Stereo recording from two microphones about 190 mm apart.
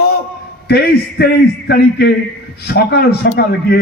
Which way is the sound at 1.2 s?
55° left (ahead or behind).